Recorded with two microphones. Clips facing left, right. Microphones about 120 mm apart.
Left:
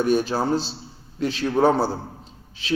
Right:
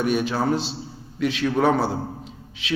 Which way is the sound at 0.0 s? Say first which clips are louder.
Left 1 dB; 35° left (ahead or behind).